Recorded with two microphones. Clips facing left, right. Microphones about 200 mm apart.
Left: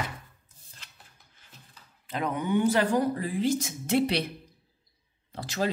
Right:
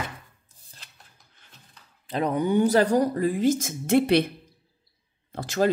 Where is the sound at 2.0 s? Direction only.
35° right (ahead or behind); by 4.2 s 50° right (ahead or behind).